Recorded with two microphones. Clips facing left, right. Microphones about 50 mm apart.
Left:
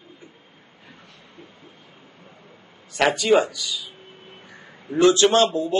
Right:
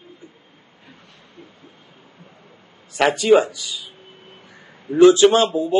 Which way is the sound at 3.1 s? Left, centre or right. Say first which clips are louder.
Right 6 dB; right.